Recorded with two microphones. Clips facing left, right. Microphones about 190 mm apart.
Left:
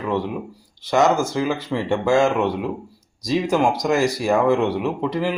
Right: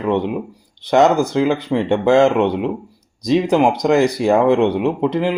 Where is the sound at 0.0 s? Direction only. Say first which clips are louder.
Right 5 dB; 20° right (ahead or behind).